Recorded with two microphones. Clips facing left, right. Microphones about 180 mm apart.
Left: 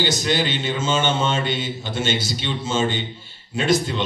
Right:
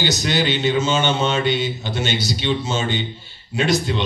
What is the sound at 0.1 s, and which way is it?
A man's voice, 50° left (ahead or behind).